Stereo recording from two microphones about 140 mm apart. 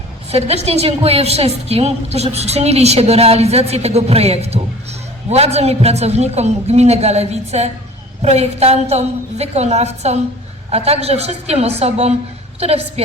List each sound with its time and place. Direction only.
0.3 s a woman's voice: 50° right (ahead or behind)